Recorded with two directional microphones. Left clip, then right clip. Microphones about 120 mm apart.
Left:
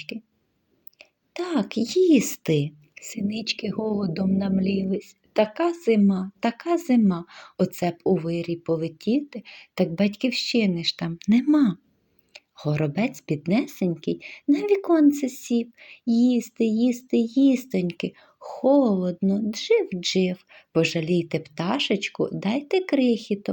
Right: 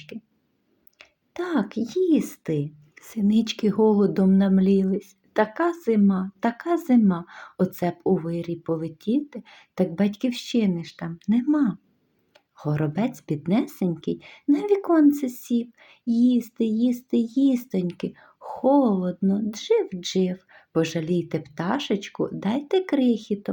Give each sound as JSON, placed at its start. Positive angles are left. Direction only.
{"t": 0.9, "sound": "a sound", "side_deg": 5}
{"t": 1.6, "sound": "speech", "side_deg": 25}
{"t": 3.2, "sound": "speech", "side_deg": 5}
{"t": 10.9, "sound": "speech", "side_deg": 30}
{"t": 12.3, "sound": "speech", "side_deg": 15}